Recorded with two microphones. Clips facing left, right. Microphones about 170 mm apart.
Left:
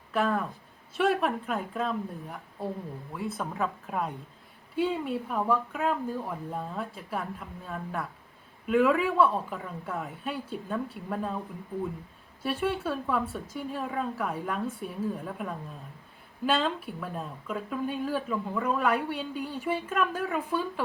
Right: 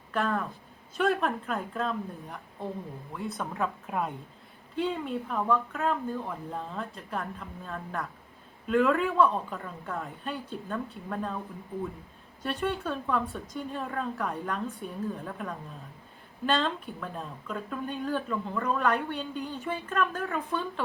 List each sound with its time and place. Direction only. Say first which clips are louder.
0.1 s speech: left 2 dB; 5° left (ahead or behind)
12.4 s speech: left 2 dB; 5° left (ahead or behind)